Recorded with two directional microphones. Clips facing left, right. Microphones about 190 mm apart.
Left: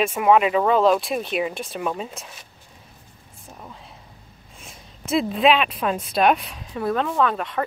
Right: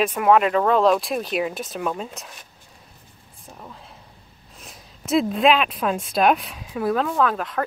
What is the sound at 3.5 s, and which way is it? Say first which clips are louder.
Speech: even; centre (ahead or behind).